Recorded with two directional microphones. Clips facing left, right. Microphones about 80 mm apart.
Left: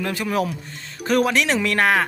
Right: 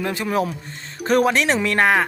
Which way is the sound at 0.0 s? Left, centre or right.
Right.